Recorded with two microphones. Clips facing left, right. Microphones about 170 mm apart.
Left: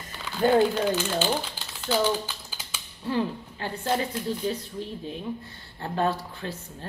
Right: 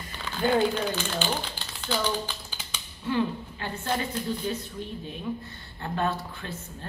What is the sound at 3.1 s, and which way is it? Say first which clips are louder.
Speech: even; 35° left (ahead or behind).